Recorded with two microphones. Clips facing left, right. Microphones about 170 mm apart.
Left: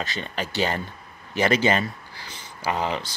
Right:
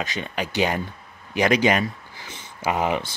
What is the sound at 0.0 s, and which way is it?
Speech, 15° right (ahead or behind).